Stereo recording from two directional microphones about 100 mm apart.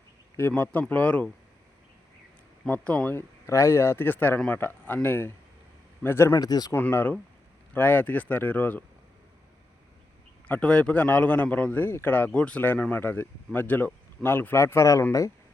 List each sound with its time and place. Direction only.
0.3 s speech: 20° left (ahead or behind)
2.6 s speech: 15° left (ahead or behind)
3.2 s a man's voice: 30° left (ahead or behind)
6.4 s speech: 40° left (ahead or behind)
6.7 s a man's voice: 20° left (ahead or behind)
10.5 s a man's voice: 10° left (ahead or behind); by 15.0 s 30° left (ahead or behind)